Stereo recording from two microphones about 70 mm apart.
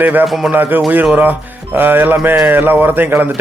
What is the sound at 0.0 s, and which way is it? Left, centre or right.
Speech, right.